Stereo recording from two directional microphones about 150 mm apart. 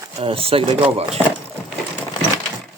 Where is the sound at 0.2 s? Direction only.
40° right (ahead or behind).